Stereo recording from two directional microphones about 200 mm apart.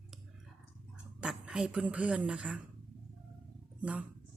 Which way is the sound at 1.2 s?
5° right (ahead or behind).